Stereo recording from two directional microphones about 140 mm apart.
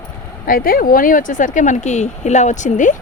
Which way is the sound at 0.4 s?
90° left.